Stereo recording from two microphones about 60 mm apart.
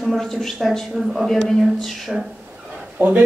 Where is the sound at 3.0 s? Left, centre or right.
Right.